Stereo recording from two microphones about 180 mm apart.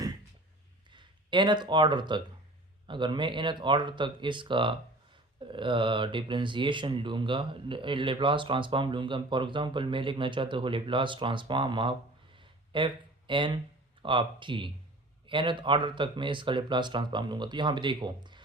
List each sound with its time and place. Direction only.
0.9 s speech: 25° right (ahead or behind)
12.4 s a sound: 25° right (ahead or behind)
14.0 s speech: 30° right (ahead or behind)